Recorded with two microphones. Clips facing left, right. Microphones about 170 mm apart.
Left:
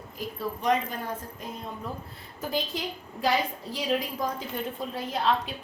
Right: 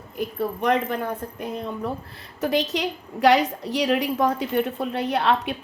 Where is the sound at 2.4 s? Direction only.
75° right (ahead or behind).